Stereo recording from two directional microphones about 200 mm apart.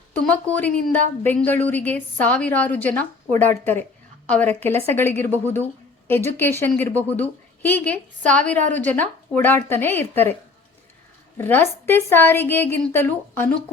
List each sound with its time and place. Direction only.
0.1 s a woman's voice: 5° left (ahead or behind)
11.3 s a woman's voice: 10° left (ahead or behind)